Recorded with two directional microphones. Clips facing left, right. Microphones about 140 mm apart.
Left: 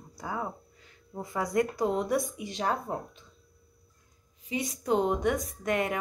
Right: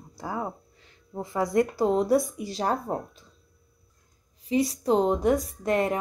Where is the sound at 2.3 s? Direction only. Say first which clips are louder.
Right 3 dB; 40° right (ahead or behind).